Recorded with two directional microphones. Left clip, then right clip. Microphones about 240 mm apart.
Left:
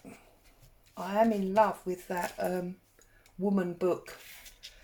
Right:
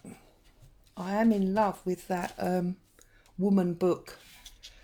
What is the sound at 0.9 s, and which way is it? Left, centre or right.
Speech, right.